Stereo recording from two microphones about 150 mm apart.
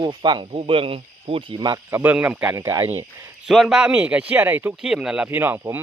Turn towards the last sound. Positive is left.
turn(degrees=-15)  # may be behind; listen again after turning